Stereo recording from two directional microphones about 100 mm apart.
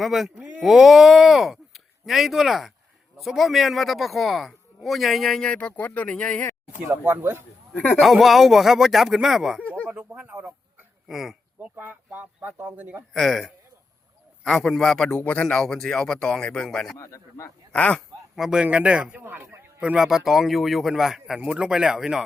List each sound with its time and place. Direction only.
0.0 s a man's voice: centre (ahead or behind); by 6.5 s 15° left (ahead or behind)
6.9 s speech: 20° right (ahead or behind)
7.7 s speech: 15° left (ahead or behind)
8.0 s a man's voice: centre (ahead or behind)
9.8 s a sound: 15° right (ahead or behind)
10.2 s speech: 15° right (ahead or behind)
11.1 s a man's voice: 5° right (ahead or behind)
11.6 s speech: 20° right (ahead or behind)
13.1 s a man's voice: centre (ahead or behind)
17.0 s a man's voice: 30° left (ahead or behind)
17.7 s speech: 10° left (ahead or behind)
18.3 s speech: 5° right (ahead or behind)
19.2 s a sound: 25° right (ahead or behind)
19.8 s a man's voice: 10° right (ahead or behind)